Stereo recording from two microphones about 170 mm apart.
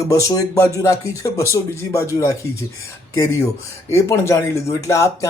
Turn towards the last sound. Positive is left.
turn(degrees=20)  # may be behind; listen again after turning